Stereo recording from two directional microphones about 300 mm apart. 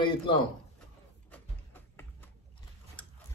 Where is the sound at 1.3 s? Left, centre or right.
Centre.